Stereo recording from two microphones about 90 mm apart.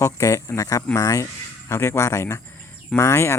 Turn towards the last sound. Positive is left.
turn(degrees=30)  # may be behind; listen again after turning